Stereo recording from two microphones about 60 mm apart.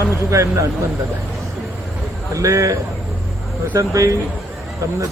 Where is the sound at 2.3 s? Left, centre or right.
Right.